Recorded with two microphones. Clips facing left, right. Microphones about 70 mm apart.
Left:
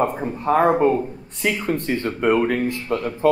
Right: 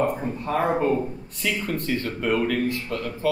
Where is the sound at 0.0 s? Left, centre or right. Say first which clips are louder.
Left 3 dB; left.